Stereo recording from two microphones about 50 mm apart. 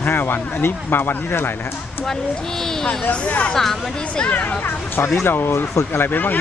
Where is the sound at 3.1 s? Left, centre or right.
Left.